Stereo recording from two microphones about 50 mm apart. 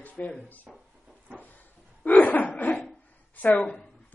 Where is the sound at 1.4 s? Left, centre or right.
Left.